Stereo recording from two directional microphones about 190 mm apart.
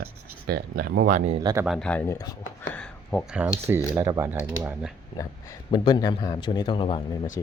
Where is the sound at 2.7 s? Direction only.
5° left (ahead or behind).